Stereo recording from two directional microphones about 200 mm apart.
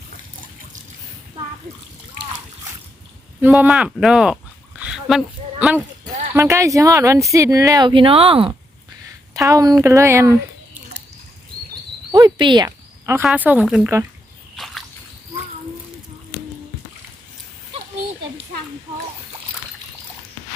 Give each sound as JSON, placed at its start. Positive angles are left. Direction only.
{"t": 3.4, "sound": "speech", "side_deg": -10}
{"t": 4.8, "sound": "a sound", "side_deg": 0}
{"t": 6.3, "sound": "speech", "side_deg": -15}
{"t": 9.3, "sound": "speech", "side_deg": -15}
{"t": 12.1, "sound": "speech", "side_deg": -20}
{"t": 14.5, "sound": "a sound", "side_deg": 0}